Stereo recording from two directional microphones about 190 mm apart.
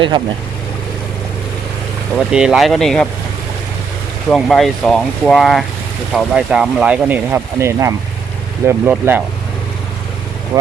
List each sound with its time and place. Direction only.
2.3 s speech: 5° right (ahead or behind)
4.3 s speech: centre (ahead or behind)
10.5 s speech: 15° right (ahead or behind)